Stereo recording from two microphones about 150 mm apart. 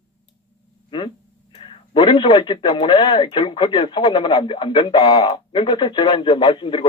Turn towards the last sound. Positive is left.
turn(degrees=35)  # may be behind; listen again after turning